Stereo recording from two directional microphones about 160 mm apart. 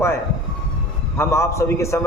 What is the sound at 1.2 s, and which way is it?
Speech, 15° left (ahead or behind).